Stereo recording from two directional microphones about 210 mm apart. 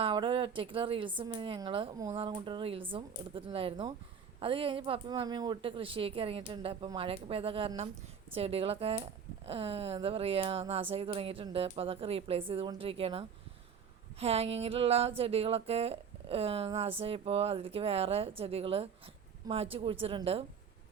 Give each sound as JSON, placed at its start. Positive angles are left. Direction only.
{"t": 0.0, "sound": "speech", "side_deg": -25}